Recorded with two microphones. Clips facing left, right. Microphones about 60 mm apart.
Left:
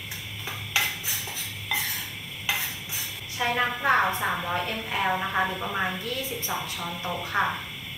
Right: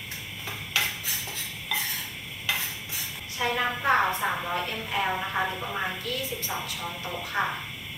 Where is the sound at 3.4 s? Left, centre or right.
Centre.